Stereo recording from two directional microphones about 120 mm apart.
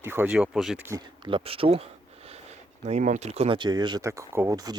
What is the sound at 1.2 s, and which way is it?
Speech, 50° right (ahead or behind).